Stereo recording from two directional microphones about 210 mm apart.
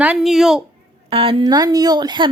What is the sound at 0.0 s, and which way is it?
Speech, 5° right (ahead or behind).